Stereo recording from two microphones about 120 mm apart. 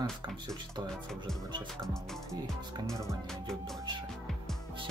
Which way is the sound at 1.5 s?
40° right (ahead or behind).